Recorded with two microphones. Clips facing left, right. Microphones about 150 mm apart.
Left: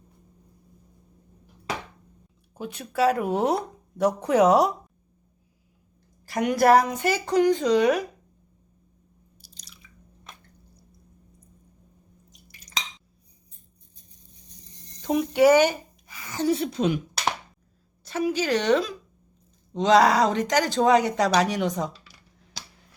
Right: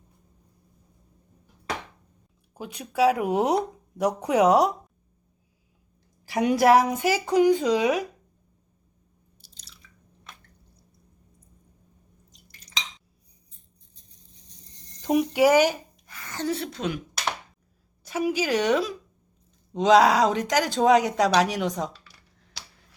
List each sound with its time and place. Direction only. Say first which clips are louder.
2.6 s speech: right 1 dB; 5° right (ahead or behind)
3.2 s a woman's voice: right 1 dB; 15° right (ahead or behind)
4.3 s speech: even; centre (ahead or behind)
6.2 s a woman's voice: even; 10° right (ahead or behind)
15.0 s speech: left 1 dB; 10° right (ahead or behind); by 17.0 s 20° left (ahead or behind)
18.0 s a woman's voice: even; 10° right (ahead or behind)